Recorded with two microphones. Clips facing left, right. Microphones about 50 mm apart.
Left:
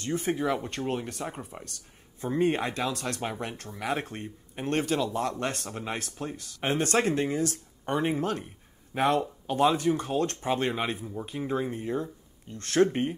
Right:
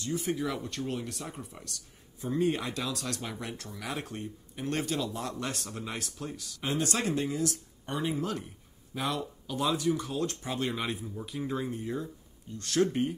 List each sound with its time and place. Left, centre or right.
0.0 s speech: left